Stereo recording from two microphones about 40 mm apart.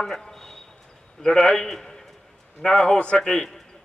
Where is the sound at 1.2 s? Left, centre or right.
Centre.